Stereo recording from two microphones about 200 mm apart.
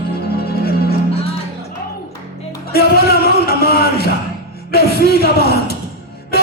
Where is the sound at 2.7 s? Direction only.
50° left (ahead or behind).